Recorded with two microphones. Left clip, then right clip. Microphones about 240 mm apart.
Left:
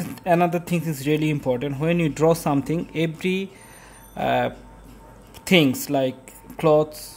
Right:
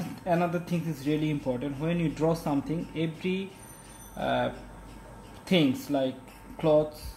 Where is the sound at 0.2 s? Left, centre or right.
Left.